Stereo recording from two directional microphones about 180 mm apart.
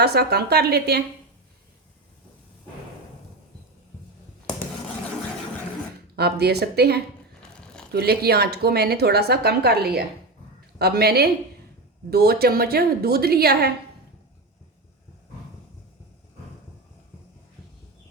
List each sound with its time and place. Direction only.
0.0 s a woman's voice: 65° right (ahead or behind)
6.1 s a woman's voice: 65° right (ahead or behind)